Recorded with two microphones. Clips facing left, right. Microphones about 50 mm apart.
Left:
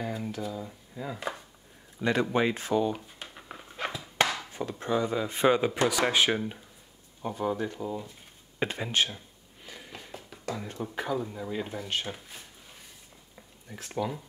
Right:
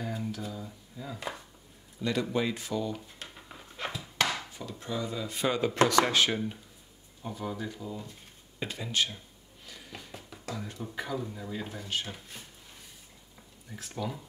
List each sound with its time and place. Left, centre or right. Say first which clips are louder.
0.0 s speech: left 2 dB; centre
2.0 s speech: left 4 dB; left
3.2 s a sound: left 2 dB; centre
4.5 s speech: left 7 dB; left
5.9 s speech: even; centre
7.2 s speech: left 6 dB; left
9.7 s a sound: left 3 dB; left
10.1 s music: left 7 dB; centre
11.0 s speech: left 3 dB; centre
13.8 s speech: left 4 dB; centre